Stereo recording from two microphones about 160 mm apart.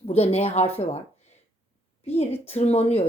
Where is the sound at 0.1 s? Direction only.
40° left (ahead or behind).